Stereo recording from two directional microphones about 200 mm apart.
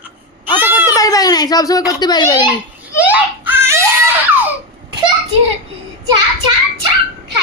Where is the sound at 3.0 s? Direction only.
10° right (ahead or behind).